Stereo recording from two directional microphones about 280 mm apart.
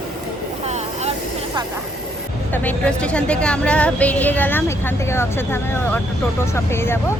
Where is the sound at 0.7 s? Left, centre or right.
Right.